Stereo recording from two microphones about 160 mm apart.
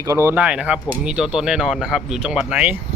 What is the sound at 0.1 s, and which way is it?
Speech, 15° right (ahead or behind).